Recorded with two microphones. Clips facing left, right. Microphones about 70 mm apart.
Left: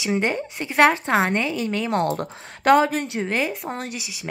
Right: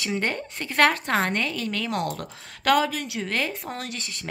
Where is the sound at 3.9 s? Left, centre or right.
Centre.